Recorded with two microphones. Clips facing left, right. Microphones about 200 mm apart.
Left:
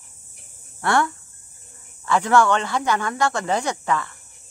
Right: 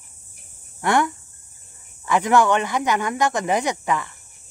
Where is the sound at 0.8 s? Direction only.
15° right (ahead or behind).